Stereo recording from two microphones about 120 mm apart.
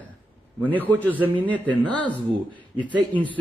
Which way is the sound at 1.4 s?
10° left (ahead or behind).